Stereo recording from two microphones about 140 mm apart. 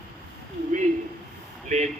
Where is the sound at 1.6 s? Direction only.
55° right (ahead or behind).